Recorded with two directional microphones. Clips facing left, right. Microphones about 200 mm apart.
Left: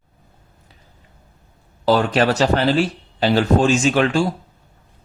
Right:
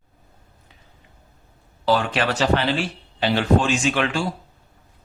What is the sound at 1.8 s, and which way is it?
Speech, 40° left (ahead or behind).